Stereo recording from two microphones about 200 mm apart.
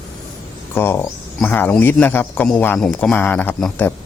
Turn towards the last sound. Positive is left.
turn(degrees=5)  # may be behind; listen again after turning